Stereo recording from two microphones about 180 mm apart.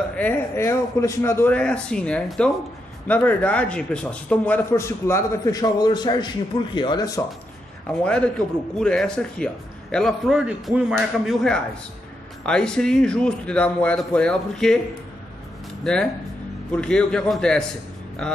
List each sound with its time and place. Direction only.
0.1 s a man's voice: 10° left (ahead or behind); by 7.1 s 25° left (ahead or behind)
8.0 s speech: 5° left (ahead or behind)
15.8 s speech: 5° left (ahead or behind)